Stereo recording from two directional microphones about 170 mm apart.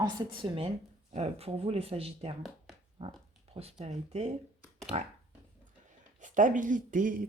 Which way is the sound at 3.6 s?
35° right (ahead or behind).